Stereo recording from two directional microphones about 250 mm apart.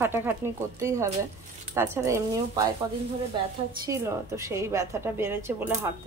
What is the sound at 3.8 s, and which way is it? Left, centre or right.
Speech, centre.